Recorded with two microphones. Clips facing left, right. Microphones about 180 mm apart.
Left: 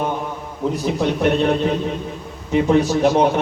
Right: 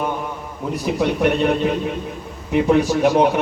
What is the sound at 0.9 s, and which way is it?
Speech, 10° right (ahead or behind).